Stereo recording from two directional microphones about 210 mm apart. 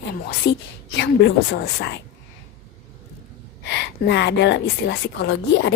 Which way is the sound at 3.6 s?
55° left (ahead or behind).